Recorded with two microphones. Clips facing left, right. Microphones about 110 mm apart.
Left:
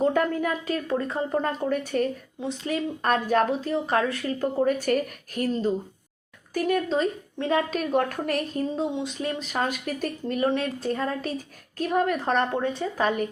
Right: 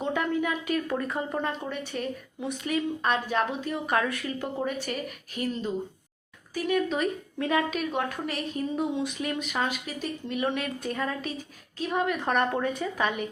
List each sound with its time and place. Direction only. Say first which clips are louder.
0.0 s speech: left 4 dB; 45° left (ahead or behind)
0.9 s speech: left 3 dB; 30° left (ahead or behind); by 2.0 s 45° left (ahead or behind)
2.4 s speech: left 1 dB; 30° left (ahead or behind); by 6.8 s 45° left (ahead or behind)
6.8 s speech: left 3 dB; 30° left (ahead or behind)
8.7 s speech: left 1 dB; 25° left (ahead or behind)